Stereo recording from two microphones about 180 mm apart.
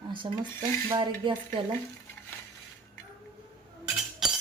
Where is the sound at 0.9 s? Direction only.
25° right (ahead or behind).